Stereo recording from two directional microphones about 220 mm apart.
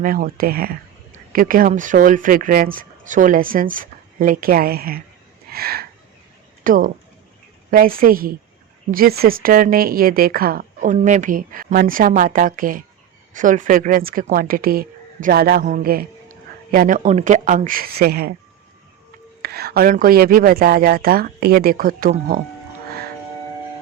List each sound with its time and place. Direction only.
0.0 s speech: 40° right (ahead or behind)
5.5 s a sound: 45° right (ahead or behind)
6.7 s speech: 40° right (ahead or behind)
19.4 s speech: 45° right (ahead or behind)